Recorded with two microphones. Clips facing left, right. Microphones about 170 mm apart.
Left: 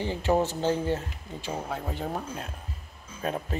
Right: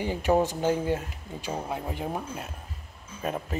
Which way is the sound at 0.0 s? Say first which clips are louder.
Right 1 dB; 15° right (ahead or behind).